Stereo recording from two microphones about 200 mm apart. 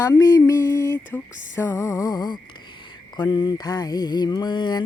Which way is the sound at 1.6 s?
15° left (ahead or behind).